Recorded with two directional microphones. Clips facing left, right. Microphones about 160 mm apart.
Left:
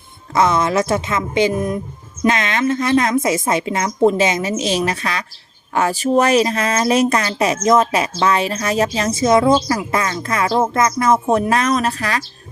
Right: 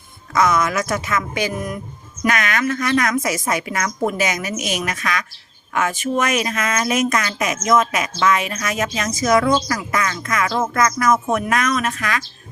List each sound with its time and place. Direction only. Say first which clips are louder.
0.3 s a woman's voice: left 2 dB; 30° left (ahead or behind)